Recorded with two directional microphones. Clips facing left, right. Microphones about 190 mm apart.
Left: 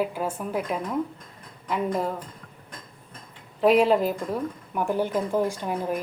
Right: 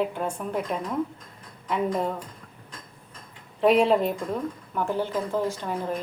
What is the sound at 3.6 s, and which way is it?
Speech, centre (ahead or behind).